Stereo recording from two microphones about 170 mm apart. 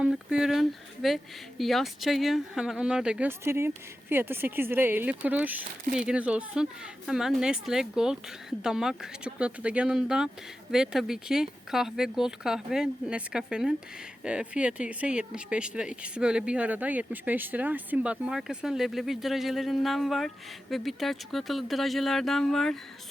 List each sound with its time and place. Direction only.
0.0 s speech: 5° right (ahead or behind)
5.8 s speech: 50° right (ahead or behind)
6.1 s speech: 5° right (ahead or behind)